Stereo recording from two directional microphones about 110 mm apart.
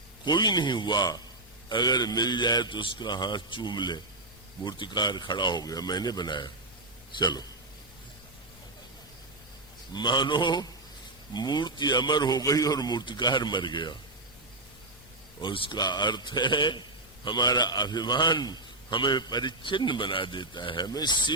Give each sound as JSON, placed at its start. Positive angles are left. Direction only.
{"t": 0.3, "sound": "a man's voice", "side_deg": 45}
{"t": 9.9, "sound": "a man's voice", "side_deg": 45}
{"t": 15.4, "sound": "a man's voice", "side_deg": 50}